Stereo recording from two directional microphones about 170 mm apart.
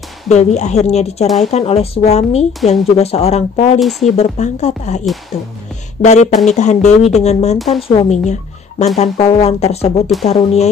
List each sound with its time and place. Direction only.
0.3 s speech: 40° left (ahead or behind)
1.2 s speech: centre (ahead or behind)
1.5 s speech: 35° left (ahead or behind)
6.0 s speech: 40° left (ahead or behind)
7.5 s speech: centre (ahead or behind)
7.9 s speech: 40° left (ahead or behind)